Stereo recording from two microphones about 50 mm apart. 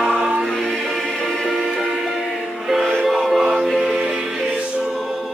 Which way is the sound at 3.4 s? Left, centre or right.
Centre.